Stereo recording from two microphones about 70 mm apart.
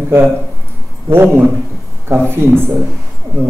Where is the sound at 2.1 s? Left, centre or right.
Right.